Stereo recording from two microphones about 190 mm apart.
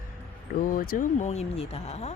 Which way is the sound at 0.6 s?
50° left (ahead or behind).